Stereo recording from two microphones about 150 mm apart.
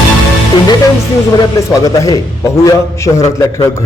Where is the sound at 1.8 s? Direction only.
20° left (ahead or behind).